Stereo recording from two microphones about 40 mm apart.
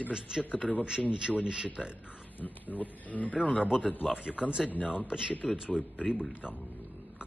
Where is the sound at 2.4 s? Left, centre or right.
Left.